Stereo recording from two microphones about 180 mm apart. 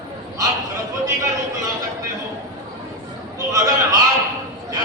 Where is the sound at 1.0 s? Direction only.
20° right (ahead or behind).